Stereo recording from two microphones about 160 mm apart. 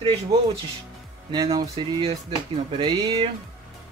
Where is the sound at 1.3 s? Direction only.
25° right (ahead or behind).